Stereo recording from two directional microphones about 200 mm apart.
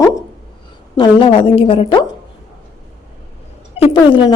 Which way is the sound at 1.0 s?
25° left (ahead or behind).